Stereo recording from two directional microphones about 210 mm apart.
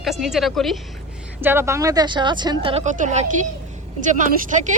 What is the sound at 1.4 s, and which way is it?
A woman's voice, 10° right (ahead or behind).